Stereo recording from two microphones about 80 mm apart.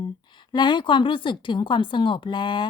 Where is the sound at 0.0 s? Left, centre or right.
Left.